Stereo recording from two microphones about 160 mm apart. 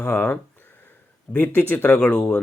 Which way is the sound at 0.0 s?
10° left (ahead or behind).